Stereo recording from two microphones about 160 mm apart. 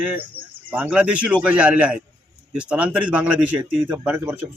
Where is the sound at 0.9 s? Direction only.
5° right (ahead or behind).